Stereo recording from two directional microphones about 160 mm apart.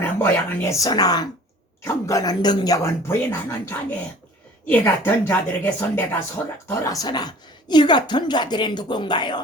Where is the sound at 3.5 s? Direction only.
10° left (ahead or behind).